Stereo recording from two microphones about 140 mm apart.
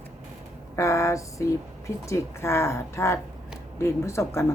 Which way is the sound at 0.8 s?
20° left (ahead or behind).